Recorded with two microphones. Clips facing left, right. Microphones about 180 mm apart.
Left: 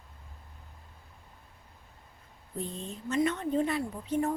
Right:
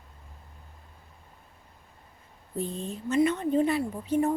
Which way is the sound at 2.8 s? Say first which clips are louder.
Right 4 dB; 5° right (ahead or behind).